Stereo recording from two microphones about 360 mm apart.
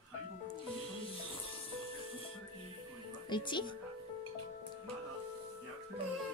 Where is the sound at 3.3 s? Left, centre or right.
Centre.